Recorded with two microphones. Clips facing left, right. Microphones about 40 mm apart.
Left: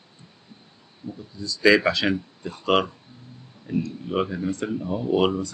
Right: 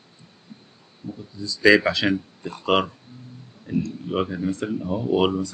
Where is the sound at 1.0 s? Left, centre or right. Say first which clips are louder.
Right 1 dB; right.